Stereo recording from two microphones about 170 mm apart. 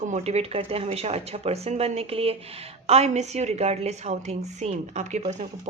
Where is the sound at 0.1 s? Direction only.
40° right (ahead or behind).